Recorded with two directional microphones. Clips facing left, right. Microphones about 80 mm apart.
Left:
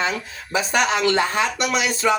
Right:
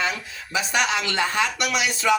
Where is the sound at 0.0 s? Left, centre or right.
Left.